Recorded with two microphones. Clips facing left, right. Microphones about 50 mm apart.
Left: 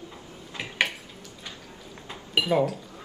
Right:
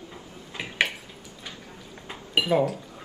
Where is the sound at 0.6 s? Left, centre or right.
Centre.